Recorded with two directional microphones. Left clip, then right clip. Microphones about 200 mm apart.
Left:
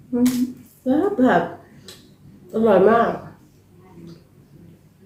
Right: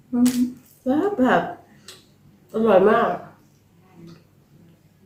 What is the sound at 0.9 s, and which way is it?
Speech, 10° right (ahead or behind).